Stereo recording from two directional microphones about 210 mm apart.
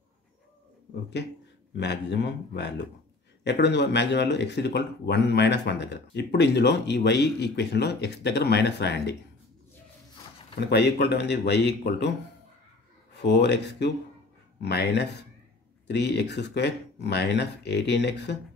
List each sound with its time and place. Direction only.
1.8 s speech: 55° left (ahead or behind)
10.6 s speech: 50° left (ahead or behind)
13.1 s speech: 55° left (ahead or behind)